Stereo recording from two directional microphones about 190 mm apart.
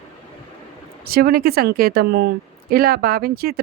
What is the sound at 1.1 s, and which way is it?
Speech, 55° right (ahead or behind).